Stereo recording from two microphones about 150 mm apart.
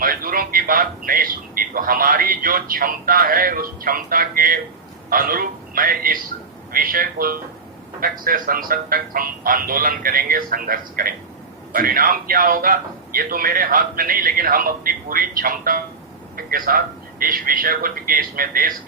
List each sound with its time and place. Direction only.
0.0 s a man's voice: 70° right (ahead or behind)